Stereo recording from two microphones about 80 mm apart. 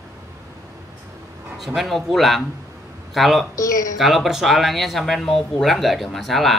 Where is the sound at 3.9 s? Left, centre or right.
Centre.